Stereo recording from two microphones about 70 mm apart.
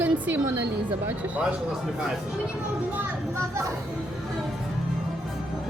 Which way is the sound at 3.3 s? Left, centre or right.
Right.